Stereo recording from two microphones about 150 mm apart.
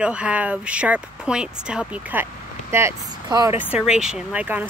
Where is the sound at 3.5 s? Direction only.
10° right (ahead or behind).